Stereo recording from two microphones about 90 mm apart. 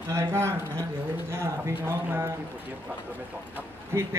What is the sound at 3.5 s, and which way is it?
Speech, 30° right (ahead or behind).